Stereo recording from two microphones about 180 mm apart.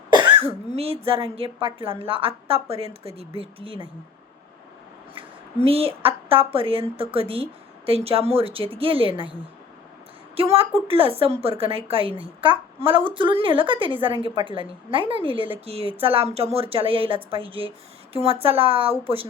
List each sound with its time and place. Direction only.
0.1 s cough: 25° right (ahead or behind)
0.8 s a woman's voice: 30° right (ahead or behind)
5.6 s a woman's voice: 30° right (ahead or behind)
10.3 s a woman's voice: 30° right (ahead or behind)